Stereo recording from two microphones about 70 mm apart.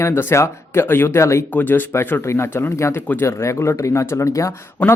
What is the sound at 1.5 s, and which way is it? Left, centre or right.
Speech, left.